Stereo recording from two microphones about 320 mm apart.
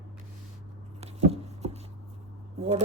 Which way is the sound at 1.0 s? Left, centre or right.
Centre.